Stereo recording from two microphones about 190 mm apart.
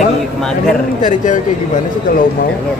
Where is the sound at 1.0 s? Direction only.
40° left (ahead or behind).